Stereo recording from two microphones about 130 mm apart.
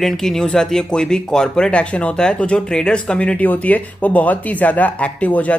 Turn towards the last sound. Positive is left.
turn(degrees=10)  # may be behind; listen again after turning